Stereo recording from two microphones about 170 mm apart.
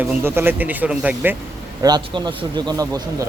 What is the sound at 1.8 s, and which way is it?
Speech, 25° right (ahead or behind).